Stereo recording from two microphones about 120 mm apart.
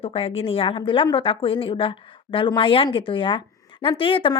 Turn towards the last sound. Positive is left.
turn(degrees=45)  # may be behind; listen again after turning